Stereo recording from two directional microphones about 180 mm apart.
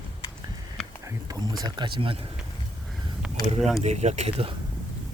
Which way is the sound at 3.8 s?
40° right (ahead or behind).